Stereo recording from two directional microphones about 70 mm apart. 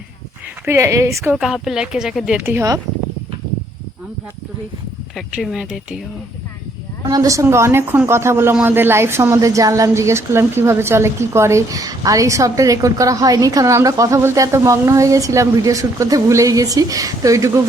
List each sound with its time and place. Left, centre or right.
0.7 s a woman's voice: right
1.4 s speech: centre
5.4 s speech: centre
7.1 s a woman's voice: right